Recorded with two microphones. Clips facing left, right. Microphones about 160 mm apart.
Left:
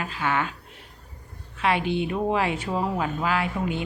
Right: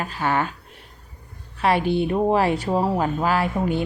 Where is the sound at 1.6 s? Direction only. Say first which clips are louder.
Right 4 dB; 40° right (ahead or behind).